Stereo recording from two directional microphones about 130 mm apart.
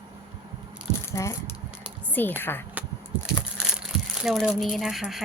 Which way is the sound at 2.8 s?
10° right (ahead or behind).